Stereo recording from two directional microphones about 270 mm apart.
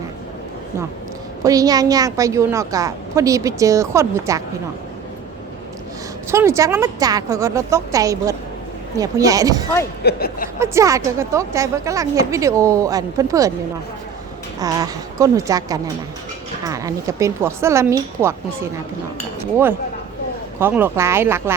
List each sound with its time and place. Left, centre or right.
1.5 s a woman's voice: centre
6.3 s a woman's voice: centre
10.0 s speech: left
10.6 s a woman's voice: centre
14.6 s a woman's voice: centre
20.6 s a woman's voice: centre